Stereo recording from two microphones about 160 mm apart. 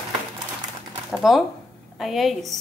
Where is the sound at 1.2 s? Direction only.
Centre (ahead or behind).